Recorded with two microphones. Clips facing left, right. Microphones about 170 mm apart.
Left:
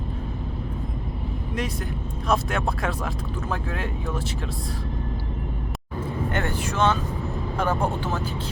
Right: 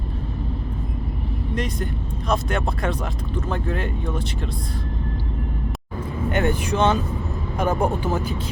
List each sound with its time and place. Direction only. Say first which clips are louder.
1.5 s speech: right 2 dB; 5° left (ahead or behind)
6.3 s speech: right 8 dB; 15° right (ahead or behind)